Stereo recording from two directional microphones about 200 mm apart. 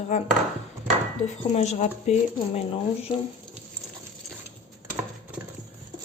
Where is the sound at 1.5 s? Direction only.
35° left (ahead or behind).